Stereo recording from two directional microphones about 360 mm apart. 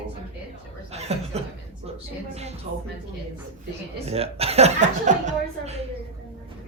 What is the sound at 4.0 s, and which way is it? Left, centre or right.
Speech, centre.